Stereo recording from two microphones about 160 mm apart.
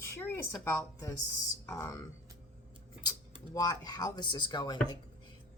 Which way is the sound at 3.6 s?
25° left (ahead or behind).